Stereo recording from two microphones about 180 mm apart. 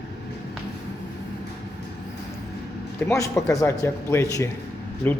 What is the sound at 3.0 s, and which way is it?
A man's voice, 15° left (ahead or behind).